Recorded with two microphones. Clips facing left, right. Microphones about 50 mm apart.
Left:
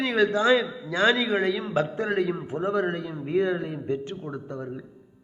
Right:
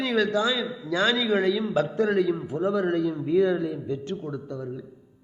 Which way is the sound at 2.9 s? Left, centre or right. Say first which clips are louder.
Right 6 dB; left.